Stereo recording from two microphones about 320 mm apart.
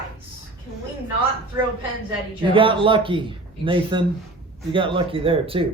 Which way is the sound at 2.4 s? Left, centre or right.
Centre.